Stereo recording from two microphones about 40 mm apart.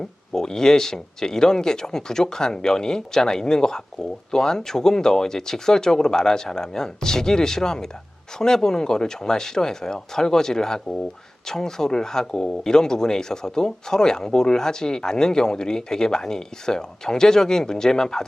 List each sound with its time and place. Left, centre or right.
0.3 s speech: centre